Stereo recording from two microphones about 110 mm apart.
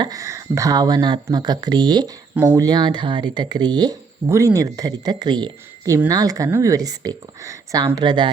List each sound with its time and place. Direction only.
0.0 s speech: 30° right (ahead or behind)
2.3 s speech: 20° right (ahead or behind)
2.6 s speech: 40° right (ahead or behind)
4.3 s speech: 25° right (ahead or behind); by 8.3 s 45° right (ahead or behind)